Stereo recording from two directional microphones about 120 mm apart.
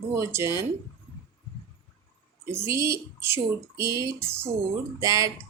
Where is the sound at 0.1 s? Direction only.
20° right (ahead or behind).